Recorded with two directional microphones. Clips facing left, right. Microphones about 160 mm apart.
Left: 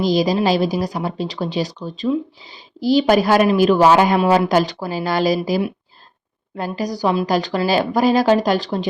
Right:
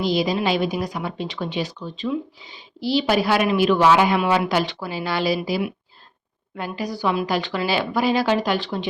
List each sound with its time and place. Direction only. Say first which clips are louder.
0.0 s speech: left 4 dB; 40° left (ahead or behind)